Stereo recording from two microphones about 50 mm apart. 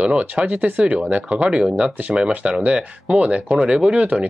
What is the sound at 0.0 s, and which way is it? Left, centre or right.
Speech, right.